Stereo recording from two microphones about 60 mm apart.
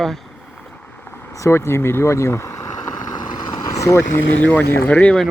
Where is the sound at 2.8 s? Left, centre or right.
Left.